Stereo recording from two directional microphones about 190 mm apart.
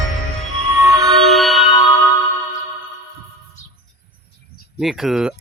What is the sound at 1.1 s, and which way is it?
Music, centre (ahead or behind).